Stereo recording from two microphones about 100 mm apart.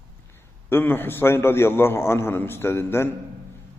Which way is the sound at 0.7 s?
20° left (ahead or behind).